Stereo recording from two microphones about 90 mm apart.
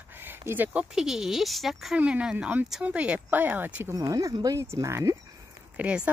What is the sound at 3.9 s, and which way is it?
Speech, 40° right (ahead or behind).